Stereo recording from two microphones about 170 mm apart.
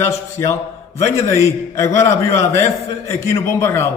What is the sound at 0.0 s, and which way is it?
A man's voice, 15° left (ahead or behind).